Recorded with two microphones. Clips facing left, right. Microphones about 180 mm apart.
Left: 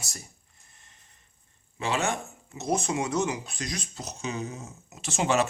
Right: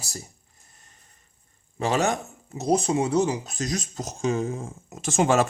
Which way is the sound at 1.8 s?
40° right (ahead or behind).